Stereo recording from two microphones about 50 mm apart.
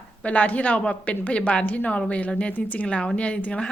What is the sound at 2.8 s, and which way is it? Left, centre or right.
Speech, centre.